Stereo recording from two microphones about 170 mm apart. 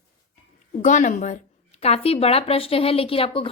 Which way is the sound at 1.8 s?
35° left (ahead or behind).